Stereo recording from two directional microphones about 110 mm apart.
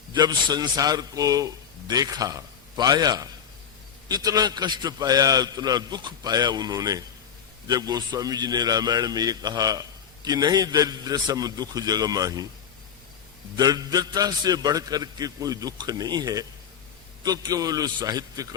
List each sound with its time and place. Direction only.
0.1 s a man's voice: 40° right (ahead or behind)
13.6 s a man's voice: 35° right (ahead or behind)